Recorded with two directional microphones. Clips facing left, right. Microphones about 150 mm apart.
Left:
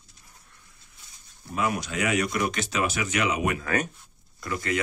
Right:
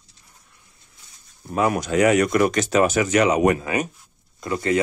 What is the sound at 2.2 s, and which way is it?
Speech, 60° right (ahead or behind).